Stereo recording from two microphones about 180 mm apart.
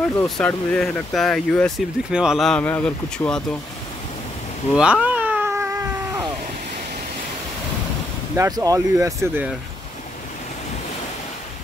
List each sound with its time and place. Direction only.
0.1 s speech: 10° left (ahead or behind)
4.7 s cat: 5° right (ahead or behind)
8.4 s speech: 20° right (ahead or behind)